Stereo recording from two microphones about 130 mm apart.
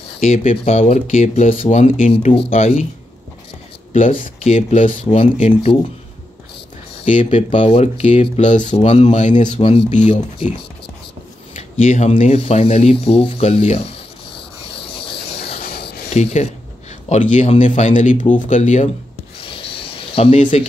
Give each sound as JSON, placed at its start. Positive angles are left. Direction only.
{"t": 0.2, "sound": "speech", "side_deg": 60}
{"t": 4.4, "sound": "speech", "side_deg": 55}
{"t": 7.1, "sound": "speech", "side_deg": 70}
{"t": 7.6, "sound": "speech", "side_deg": 50}
{"t": 9.5, "sound": "speech", "side_deg": 50}
{"t": 11.8, "sound": "speech", "side_deg": 60}
{"t": 15.0, "sound": "a sound", "side_deg": 50}
{"t": 16.1, "sound": "speech", "side_deg": 60}
{"t": 19.4, "sound": "a sound", "side_deg": 45}